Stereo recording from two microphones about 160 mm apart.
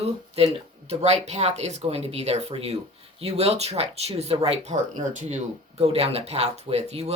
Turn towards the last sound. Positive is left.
turn(degrees=-40)  # may be behind; listen again after turning